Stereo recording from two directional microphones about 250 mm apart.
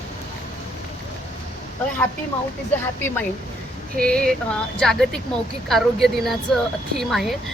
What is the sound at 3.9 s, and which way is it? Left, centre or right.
Speech, centre.